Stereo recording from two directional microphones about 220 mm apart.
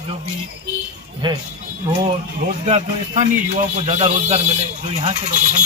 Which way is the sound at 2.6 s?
30° right (ahead or behind).